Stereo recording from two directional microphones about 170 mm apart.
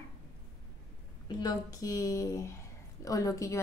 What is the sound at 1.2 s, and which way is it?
A woman's voice, 25° left (ahead or behind).